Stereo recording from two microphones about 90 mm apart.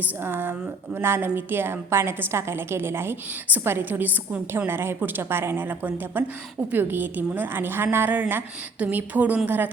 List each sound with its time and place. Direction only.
0.0 s a woman's voice: 25° right (ahead or behind)